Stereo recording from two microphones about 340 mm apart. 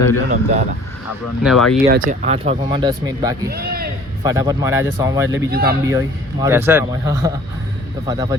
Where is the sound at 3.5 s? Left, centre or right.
Right.